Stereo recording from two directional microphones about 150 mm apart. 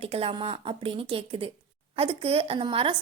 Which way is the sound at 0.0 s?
40° right (ahead or behind).